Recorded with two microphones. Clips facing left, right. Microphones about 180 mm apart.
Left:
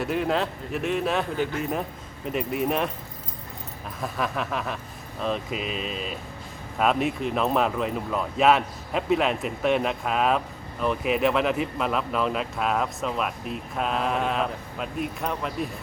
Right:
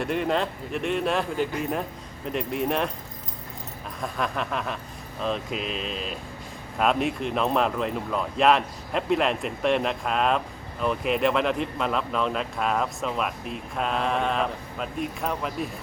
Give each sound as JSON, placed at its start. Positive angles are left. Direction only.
{"t": 0.0, "sound": "speech", "side_deg": 0}
{"t": 4.0, "sound": "speech", "side_deg": 0}